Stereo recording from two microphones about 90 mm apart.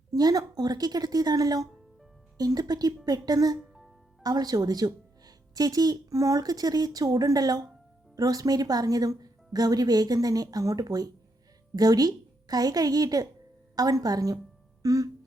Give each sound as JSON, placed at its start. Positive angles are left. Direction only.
{"t": 0.1, "sound": "a woman's voice", "side_deg": -45}
{"t": 3.6, "sound": "music", "side_deg": 0}
{"t": 4.2, "sound": "a woman's voice", "side_deg": -45}